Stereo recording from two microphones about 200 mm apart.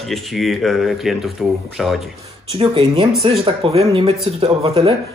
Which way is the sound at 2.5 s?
25° right (ahead or behind).